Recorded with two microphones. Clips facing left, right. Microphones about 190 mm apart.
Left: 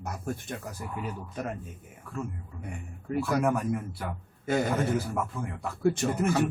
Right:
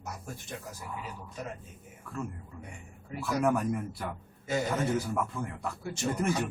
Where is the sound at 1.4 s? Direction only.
55° left (ahead or behind).